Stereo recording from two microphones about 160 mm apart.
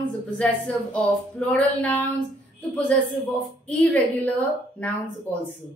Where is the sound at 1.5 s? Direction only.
10° left (ahead or behind).